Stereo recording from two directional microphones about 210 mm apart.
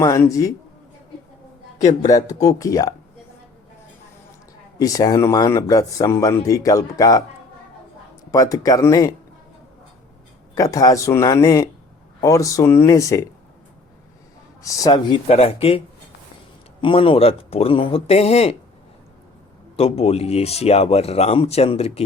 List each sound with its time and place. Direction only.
0.0 s speech: 15° left (ahead or behind)
2.2 s speech: 15° left (ahead or behind)
4.8 s speech: 15° left (ahead or behind)
8.3 s speech: 15° left (ahead or behind)
10.5 s speech: 15° left (ahead or behind)
14.6 s speech: 15° left (ahead or behind)
16.8 s speech: 25° left (ahead or behind)
19.7 s speech: 30° left (ahead or behind)